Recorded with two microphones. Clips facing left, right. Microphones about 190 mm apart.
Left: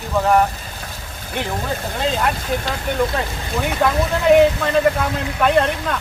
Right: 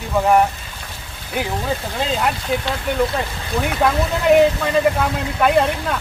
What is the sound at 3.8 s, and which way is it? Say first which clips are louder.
Speech: left 1 dB; centre (ahead or behind).